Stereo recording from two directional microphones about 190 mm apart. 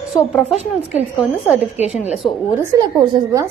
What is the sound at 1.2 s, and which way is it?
A woman's voice, 5° right (ahead or behind).